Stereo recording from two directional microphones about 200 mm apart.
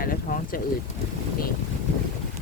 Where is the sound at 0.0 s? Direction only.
45° left (ahead or behind).